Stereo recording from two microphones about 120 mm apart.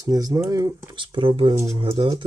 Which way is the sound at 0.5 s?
35° right (ahead or behind).